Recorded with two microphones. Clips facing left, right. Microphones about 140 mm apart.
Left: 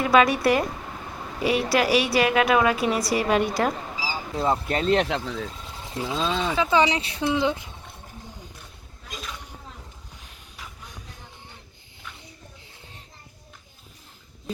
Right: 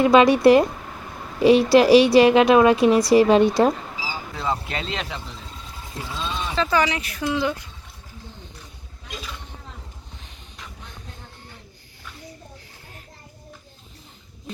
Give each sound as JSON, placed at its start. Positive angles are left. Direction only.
{"t": 0.1, "sound": "a woman's voice", "side_deg": -25}
{"t": 4.7, "sound": "speech", "side_deg": 45}
{"t": 5.0, "sound": "speech", "side_deg": 80}
{"t": 6.1, "sound": "a sound", "side_deg": 75}
{"t": 6.6, "sound": "speech", "side_deg": 20}
{"t": 10.2, "sound": "a sound", "side_deg": 5}